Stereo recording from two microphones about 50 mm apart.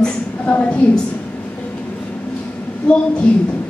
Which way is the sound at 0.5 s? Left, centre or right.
Left.